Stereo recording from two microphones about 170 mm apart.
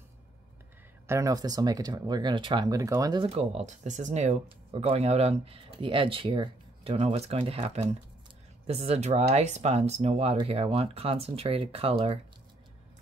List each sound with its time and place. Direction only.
1.0 s speech: 20° right (ahead or behind)
3.3 s speech: 40° right (ahead or behind)